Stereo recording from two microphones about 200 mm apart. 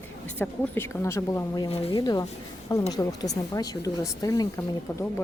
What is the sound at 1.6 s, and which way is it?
Speech, 25° left (ahead or behind).